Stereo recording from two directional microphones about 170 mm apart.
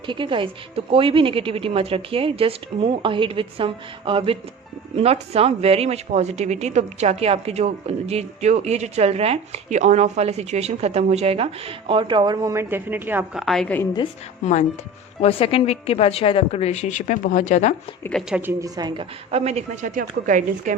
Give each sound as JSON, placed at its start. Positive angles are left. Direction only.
{"t": 0.0, "sound": "a woman's voice", "side_deg": -30}
{"t": 13.4, "sound": "a woman's voice", "side_deg": 0}
{"t": 14.4, "sound": "a woman's voice", "side_deg": 45}
{"t": 18.3, "sound": "a woman's voice", "side_deg": -5}
{"t": 18.6, "sound": "a woman's voice", "side_deg": -25}
{"t": 19.3, "sound": "a woman's voice", "side_deg": -40}